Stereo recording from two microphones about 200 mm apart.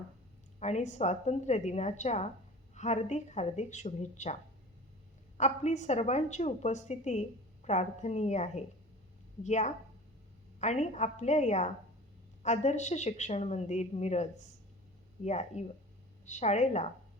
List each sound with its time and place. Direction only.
0.6 s a woman's voice: 35° left (ahead or behind)
5.4 s a woman's voice: 35° left (ahead or behind)